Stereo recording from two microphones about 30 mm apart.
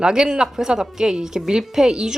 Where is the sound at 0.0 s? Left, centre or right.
Right.